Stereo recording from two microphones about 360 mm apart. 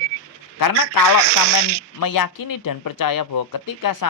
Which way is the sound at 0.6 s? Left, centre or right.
Left.